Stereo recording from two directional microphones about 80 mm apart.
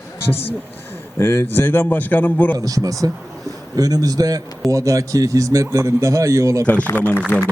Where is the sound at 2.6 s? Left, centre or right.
Right.